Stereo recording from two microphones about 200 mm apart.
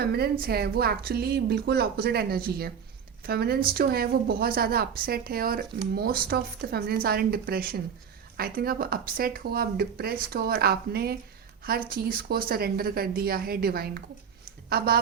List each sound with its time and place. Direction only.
0.0 s a woman's voice: 50° right (ahead or behind)